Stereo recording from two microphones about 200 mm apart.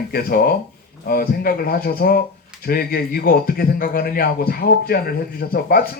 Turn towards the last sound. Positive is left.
turn(degrees=45)  # may be behind; listen again after turning